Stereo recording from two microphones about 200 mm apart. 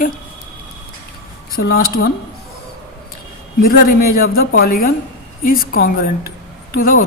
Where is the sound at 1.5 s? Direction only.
50° left (ahead or behind).